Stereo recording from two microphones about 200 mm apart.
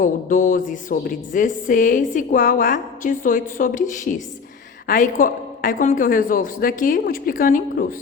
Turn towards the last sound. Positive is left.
turn(degrees=45)  # may be behind; listen again after turning